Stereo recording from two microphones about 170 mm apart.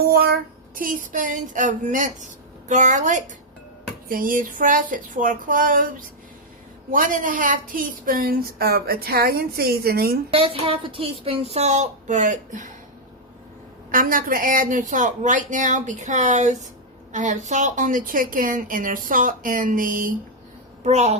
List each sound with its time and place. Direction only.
0.0 s a sound: 65° right (ahead or behind)
0.8 s a woman's voice: 55° right (ahead or behind)
10.3 s a woman's voice: 35° right (ahead or behind); by 12.7 s 50° right (ahead or behind)
13.9 s a woman's voice: 55° right (ahead or behind)
20.8 s a woman's voice: 40° right (ahead or behind)